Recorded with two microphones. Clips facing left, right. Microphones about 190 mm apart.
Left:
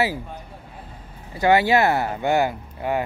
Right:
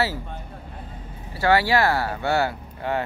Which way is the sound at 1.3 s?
20° left (ahead or behind).